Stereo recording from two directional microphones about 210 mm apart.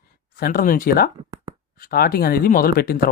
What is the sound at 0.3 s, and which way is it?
Speech, 45° left (ahead or behind).